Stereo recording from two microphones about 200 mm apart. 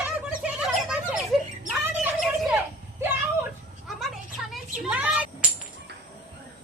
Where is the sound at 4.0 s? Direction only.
Centre (ahead or behind).